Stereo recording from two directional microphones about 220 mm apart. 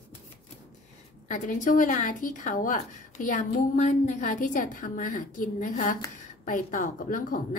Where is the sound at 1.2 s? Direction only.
35° left (ahead or behind).